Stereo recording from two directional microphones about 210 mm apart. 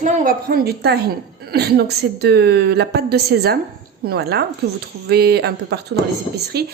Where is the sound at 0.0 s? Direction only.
40° right (ahead or behind).